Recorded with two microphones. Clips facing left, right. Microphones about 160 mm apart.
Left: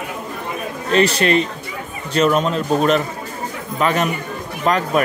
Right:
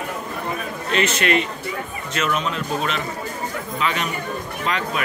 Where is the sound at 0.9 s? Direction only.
35° left (ahead or behind).